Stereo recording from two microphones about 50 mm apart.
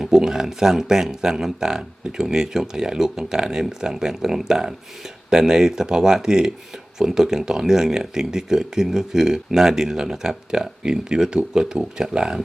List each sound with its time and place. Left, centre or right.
0.0 s speech: centre